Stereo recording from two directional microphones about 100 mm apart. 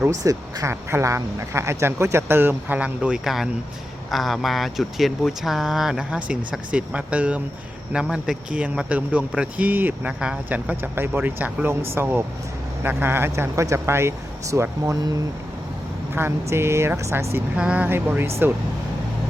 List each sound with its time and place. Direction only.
0.1 s speech: 35° right (ahead or behind)
16.1 s speech: 25° right (ahead or behind)
17.3 s speech: 10° right (ahead or behind)